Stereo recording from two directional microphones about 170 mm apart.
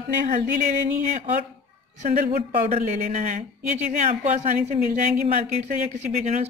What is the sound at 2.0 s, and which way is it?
A woman's voice, 45° right (ahead or behind).